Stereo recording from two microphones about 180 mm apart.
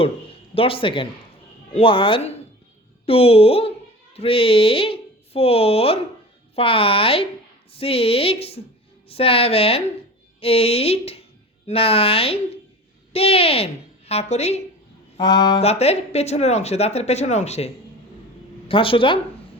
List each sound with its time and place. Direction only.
0.0 s speech: 30° left (ahead or behind)
15.2 s speech: 25° left (ahead or behind)
15.6 s speech: 35° left (ahead or behind)
18.7 s speech: 30° left (ahead or behind)